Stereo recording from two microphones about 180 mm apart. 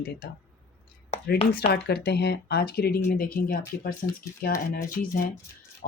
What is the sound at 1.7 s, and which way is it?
Speech, 65° left (ahead or behind).